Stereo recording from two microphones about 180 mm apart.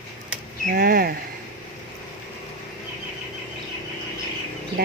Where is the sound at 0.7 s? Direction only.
60° right (ahead or behind).